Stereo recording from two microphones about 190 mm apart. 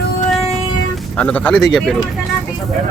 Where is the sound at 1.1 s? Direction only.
5° left (ahead or behind).